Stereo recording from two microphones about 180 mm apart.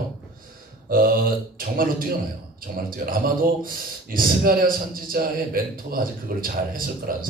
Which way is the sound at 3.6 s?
50° right (ahead or behind).